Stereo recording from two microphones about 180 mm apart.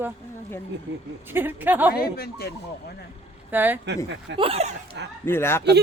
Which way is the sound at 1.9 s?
60° left (ahead or behind).